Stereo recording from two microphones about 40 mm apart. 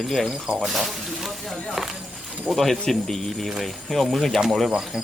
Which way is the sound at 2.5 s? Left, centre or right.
Centre.